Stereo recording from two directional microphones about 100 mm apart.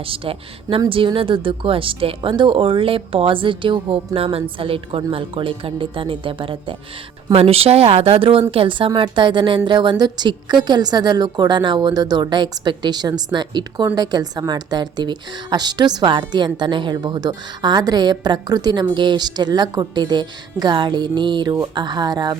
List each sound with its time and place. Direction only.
0.0 s speech: 65° right (ahead or behind)
7.3 s a woman's voice: 80° right; by 22.4 s 45° right (ahead or behind)